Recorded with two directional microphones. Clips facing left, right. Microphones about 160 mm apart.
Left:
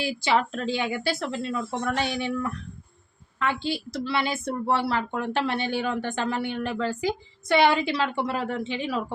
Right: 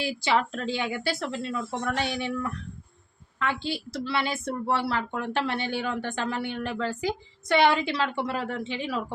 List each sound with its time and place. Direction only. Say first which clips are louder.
0.0 s speech: left 1 dB; 10° left (ahead or behind)